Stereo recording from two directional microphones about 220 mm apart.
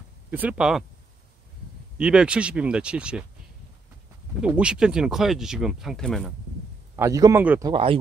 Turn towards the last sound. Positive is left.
turn(degrees=-25)  # may be behind; listen again after turning